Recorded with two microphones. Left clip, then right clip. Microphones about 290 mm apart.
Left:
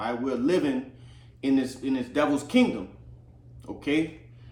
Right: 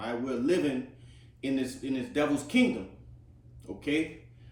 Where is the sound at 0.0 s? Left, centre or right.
Centre.